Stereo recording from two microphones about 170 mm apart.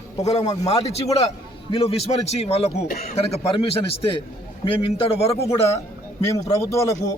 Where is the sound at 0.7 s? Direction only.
35° left (ahead or behind).